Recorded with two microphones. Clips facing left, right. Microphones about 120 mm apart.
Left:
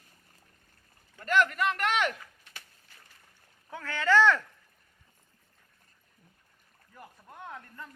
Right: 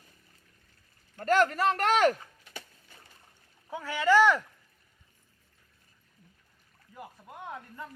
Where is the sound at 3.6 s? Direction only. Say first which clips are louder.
Right 2 dB; 15° right (ahead or behind).